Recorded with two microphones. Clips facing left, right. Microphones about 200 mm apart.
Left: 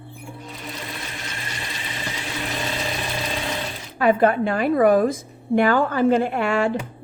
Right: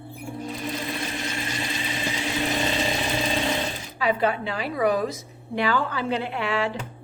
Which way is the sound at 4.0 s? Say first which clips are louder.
Left 6 dB; 50° left (ahead or behind).